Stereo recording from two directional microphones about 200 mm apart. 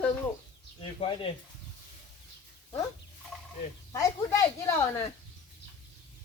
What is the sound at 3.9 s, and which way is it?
Speech, 15° left (ahead or behind).